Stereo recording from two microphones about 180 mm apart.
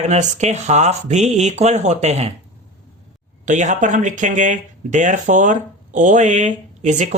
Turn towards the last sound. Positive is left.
turn(degrees=-40)  # may be behind; listen again after turning